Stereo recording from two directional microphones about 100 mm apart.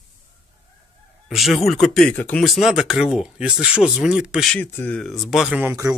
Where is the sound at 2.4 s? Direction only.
Centre (ahead or behind).